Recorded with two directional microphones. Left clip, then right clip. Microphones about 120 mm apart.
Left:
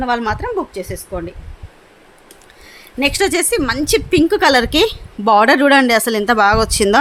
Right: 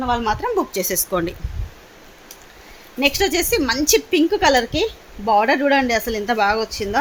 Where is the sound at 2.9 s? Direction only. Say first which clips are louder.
Left 3 dB; 35° left (ahead or behind); by 6.7 s 80° left.